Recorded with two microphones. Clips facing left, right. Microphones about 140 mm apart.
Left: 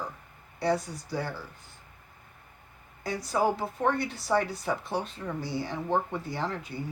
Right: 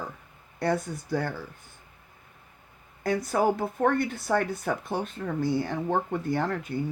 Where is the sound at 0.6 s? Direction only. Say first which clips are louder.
Right 1 dB; 55° right (ahead or behind).